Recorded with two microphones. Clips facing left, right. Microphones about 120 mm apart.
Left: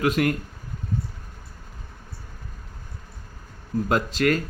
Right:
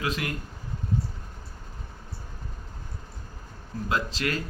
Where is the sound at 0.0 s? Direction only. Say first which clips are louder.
Left 9 dB; 55° left (ahead or behind).